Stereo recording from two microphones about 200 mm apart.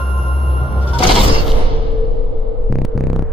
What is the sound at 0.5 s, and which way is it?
Music, centre (ahead or behind).